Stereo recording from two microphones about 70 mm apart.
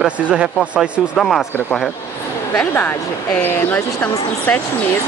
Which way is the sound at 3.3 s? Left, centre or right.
Left.